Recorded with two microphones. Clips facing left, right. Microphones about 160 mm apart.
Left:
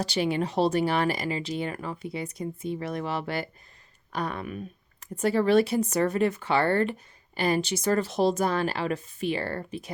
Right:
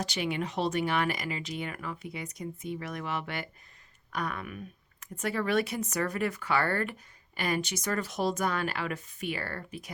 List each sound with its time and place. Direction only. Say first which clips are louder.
0.0 s a woman's voice: left 5 dB; 30° left (ahead or behind)